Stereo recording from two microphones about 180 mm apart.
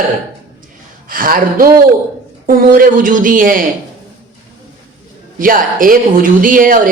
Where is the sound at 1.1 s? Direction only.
50° right (ahead or behind).